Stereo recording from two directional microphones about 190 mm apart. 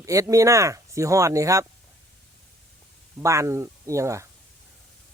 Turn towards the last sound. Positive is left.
turn(degrees=-15)  # may be behind; listen again after turning